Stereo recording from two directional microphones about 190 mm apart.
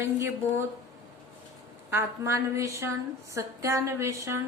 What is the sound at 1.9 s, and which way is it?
A woman's voice, 15° right (ahead or behind).